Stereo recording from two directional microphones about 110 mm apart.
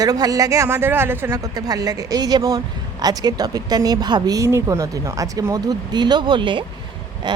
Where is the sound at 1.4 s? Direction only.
35° right (ahead or behind).